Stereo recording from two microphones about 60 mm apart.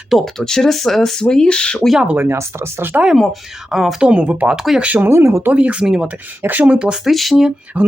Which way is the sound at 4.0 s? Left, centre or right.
Centre.